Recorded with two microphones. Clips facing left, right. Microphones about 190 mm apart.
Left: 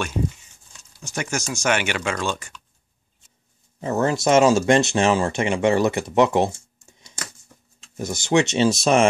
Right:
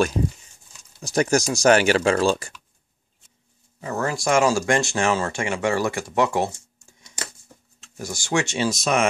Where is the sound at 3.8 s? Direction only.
25° left (ahead or behind).